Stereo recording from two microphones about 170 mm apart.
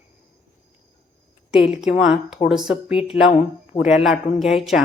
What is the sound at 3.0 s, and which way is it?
Speech, 35° left (ahead or behind).